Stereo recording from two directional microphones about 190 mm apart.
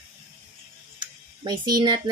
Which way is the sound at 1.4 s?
20° right (ahead or behind).